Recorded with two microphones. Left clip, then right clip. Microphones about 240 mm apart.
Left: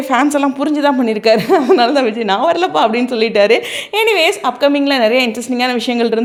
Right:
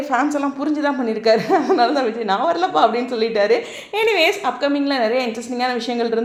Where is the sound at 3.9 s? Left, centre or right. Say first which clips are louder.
Left 4 dB; left.